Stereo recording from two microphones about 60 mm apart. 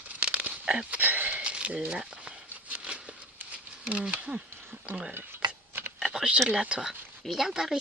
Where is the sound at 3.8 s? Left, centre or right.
Centre.